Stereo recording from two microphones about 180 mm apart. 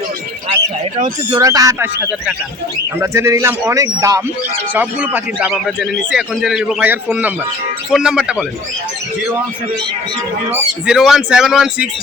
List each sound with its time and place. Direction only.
1.3 s a man's voice: 20° right (ahead or behind); by 8.4 s centre (ahead or behind)
10.5 s speech: 5° right (ahead or behind)